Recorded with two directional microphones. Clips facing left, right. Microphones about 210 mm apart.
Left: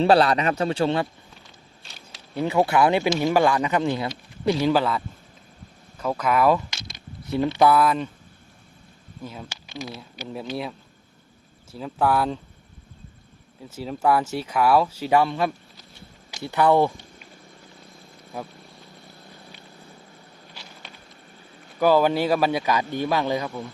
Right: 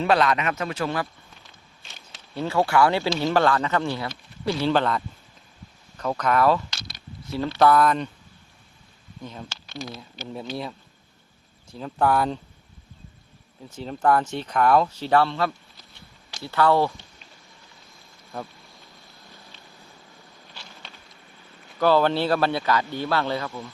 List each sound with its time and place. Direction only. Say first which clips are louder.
0.0 s a man's voice: left 3 dB; 35° left (ahead or behind)
2.3 s speech: left 1 dB; 15° left (ahead or behind)
4.7 s speech: left 1 dB; 5° left (ahead or behind)
9.2 s speech: left 1 dB; 5° left (ahead or behind)
9.5 s a sound: left 1 dB; 15° left (ahead or behind)
9.9 s speech: left 1 dB; 5° left (ahead or behind)
13.7 s speech: even; 5° left (ahead or behind)
18.3 s speech: left 1 dB; 10° left (ahead or behind)
21.8 s speech: left 1 dB; 10° left (ahead or behind)